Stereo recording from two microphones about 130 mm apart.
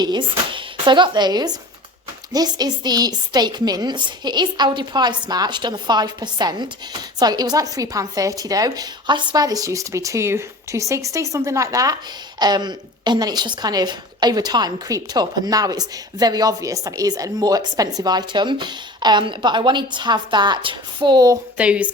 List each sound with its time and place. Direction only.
0.0 s a woman's voice: 35° right (ahead or behind)
21.6 s a woman's voice: 10° right (ahead or behind)